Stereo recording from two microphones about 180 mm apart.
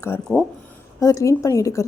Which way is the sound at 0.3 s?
Centre (ahead or behind).